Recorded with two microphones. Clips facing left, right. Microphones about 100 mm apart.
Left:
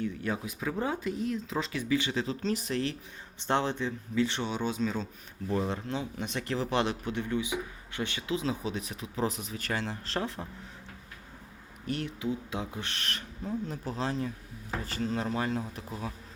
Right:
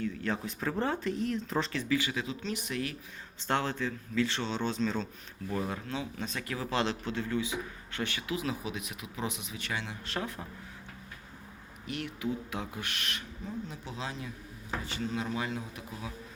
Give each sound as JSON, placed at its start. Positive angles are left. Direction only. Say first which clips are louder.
{"t": 0.0, "sound": "speech", "louder": "left 1 dB", "side_deg": 20}
{"t": 1.7, "sound": "speech", "louder": "left 2 dB", "side_deg": 20}
{"t": 3.3, "sound": "speech", "louder": "left 2 dB", "side_deg": 20}
{"t": 5.5, "sound": "speech", "louder": "left 3 dB", "side_deg": 25}
{"t": 11.9, "sound": "speech", "louder": "left 2 dB", "side_deg": 30}